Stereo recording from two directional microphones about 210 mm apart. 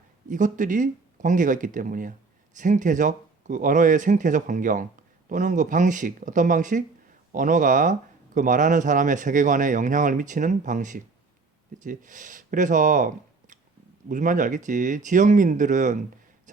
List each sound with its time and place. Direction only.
0.3 s speech: 35° right (ahead or behind)
14.1 s speech: 35° right (ahead or behind)